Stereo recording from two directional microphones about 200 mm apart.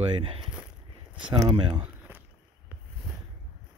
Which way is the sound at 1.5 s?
25° right (ahead or behind).